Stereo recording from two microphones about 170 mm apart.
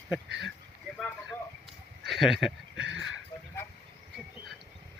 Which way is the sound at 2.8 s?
90° right.